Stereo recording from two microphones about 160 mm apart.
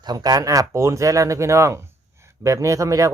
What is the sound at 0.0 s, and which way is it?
Speech, 25° right (ahead or behind).